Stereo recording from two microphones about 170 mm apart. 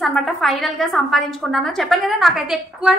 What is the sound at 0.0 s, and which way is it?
A woman's voice, centre (ahead or behind).